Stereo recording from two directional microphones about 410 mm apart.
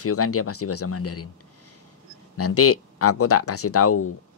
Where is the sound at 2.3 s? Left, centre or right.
Left.